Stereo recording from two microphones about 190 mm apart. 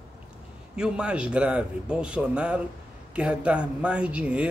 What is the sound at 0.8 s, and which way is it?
A man's voice, 5° right (ahead or behind).